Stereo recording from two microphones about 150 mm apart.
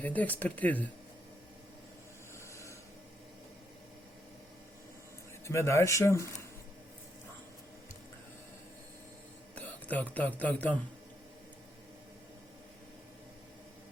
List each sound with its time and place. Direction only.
0.0 s speech: 10° left (ahead or behind)
5.5 s speech: 20° left (ahead or behind)
9.6 s speech: 10° left (ahead or behind)